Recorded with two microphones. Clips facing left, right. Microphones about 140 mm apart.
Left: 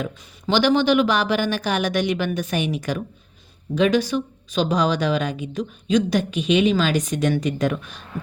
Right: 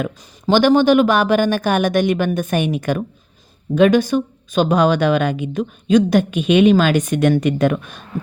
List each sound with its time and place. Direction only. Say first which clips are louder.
0.4 s speech: right 5 dB; 45° right (ahead or behind)